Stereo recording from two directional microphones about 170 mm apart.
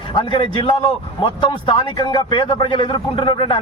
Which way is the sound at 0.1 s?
30° left (ahead or behind).